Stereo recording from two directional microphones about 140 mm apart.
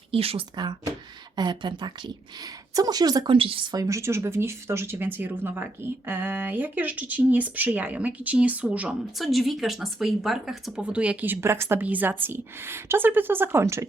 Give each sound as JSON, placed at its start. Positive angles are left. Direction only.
{"t": 0.1, "sound": "speech", "side_deg": -45}
{"t": 0.5, "sound": "a woman's voice", "side_deg": -30}
{"t": 3.3, "sound": "speech", "side_deg": -40}